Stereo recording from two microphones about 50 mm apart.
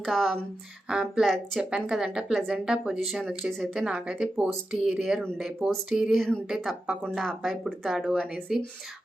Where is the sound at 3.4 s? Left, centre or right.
Centre.